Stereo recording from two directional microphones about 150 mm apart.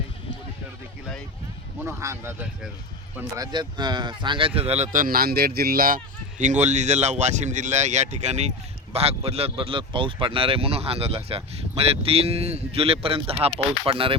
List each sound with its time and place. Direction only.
1.8 s speech: 15° right (ahead or behind)
3.3 s speech: 25° right (ahead or behind); by 6.0 s 75° right (ahead or behind)
6.4 s speech: 50° right (ahead or behind)